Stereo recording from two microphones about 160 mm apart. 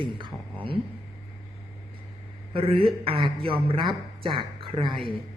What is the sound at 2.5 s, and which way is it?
A woman's voice, 35° right (ahead or behind).